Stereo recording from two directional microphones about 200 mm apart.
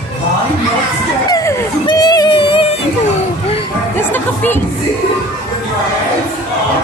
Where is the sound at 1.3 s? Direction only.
15° left (ahead or behind).